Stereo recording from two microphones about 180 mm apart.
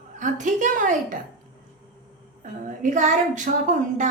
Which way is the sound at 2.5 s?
45° right (ahead or behind).